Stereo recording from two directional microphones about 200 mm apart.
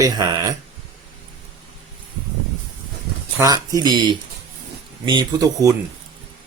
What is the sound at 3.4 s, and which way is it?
Speech, 20° right (ahead or behind).